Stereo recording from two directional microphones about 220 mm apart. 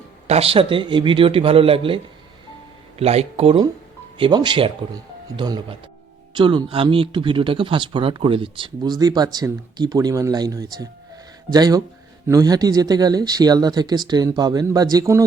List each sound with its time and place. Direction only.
0.3 s speech: 25° right (ahead or behind)
3.0 s speech: 30° right (ahead or behind)